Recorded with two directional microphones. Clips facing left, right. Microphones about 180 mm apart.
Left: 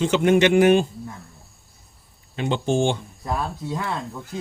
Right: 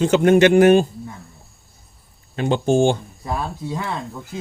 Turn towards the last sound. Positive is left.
turn(degrees=0)  # may be behind; listen again after turning